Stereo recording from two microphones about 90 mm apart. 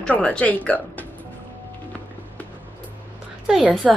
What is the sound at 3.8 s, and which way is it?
Speech, centre (ahead or behind).